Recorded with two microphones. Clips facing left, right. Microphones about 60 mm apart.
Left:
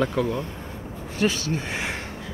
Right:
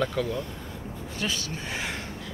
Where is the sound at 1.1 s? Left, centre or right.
Left.